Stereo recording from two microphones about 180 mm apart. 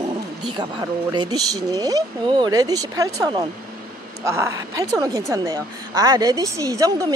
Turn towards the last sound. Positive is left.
turn(degrees=-20)  # may be behind; listen again after turning